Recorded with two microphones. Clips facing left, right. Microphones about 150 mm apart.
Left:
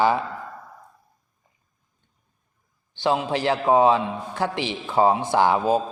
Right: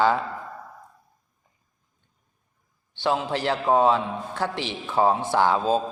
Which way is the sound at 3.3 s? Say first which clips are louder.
Left 3 dB; 15° left (ahead or behind).